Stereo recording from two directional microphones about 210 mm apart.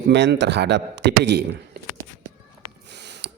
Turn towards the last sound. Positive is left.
turn(degrees=-50)  # may be behind; listen again after turning